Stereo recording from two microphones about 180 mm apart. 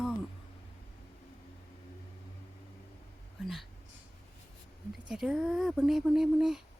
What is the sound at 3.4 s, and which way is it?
Speech, centre (ahead or behind).